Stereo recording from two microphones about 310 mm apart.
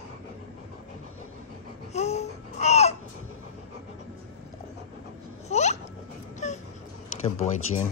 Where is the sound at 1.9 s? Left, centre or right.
Left.